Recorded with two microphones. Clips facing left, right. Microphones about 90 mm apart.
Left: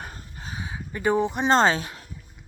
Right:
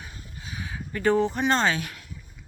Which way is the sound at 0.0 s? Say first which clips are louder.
Left 4 dB; 45° left (ahead or behind).